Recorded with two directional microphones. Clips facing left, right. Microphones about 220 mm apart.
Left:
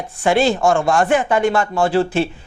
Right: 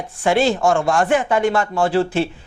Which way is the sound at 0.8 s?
25° left (ahead or behind).